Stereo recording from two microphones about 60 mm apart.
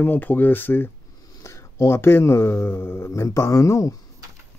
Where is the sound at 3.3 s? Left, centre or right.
Left.